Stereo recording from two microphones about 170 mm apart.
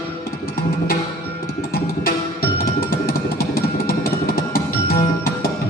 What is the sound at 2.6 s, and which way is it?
Music, 60° left (ahead or behind).